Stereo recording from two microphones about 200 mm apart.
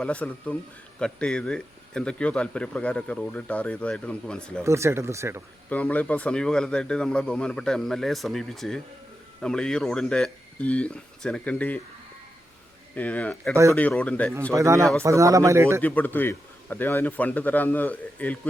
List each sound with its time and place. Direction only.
0.0 s a man's voice: 5° left (ahead or behind)
4.6 s speech: 15° right (ahead or behind)
5.6 s a man's voice: 10° left (ahead or behind)
12.9 s a man's voice: 5° left (ahead or behind)
14.5 s speech: 15° right (ahead or behind)
15.8 s a man's voice: 10° left (ahead or behind)